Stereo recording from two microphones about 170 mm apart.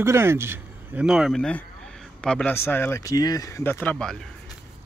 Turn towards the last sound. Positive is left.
turn(degrees=5)  # may be behind; listen again after turning